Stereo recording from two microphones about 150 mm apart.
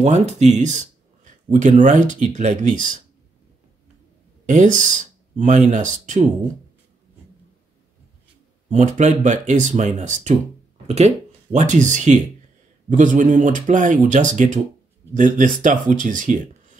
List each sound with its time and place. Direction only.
0.0 s speech: 50° right (ahead or behind)
4.5 s speech: 55° right (ahead or behind)
8.6 s speech: 55° right (ahead or behind)